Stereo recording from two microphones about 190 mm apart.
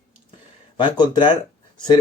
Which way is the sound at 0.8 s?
25° left (ahead or behind).